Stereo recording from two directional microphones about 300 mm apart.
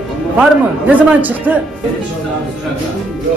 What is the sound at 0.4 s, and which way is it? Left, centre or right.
A man's voice, centre.